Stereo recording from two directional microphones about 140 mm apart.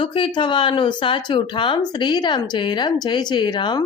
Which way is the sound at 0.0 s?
35° left (ahead or behind).